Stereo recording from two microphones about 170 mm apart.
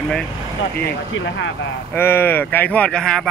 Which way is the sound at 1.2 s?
90° left.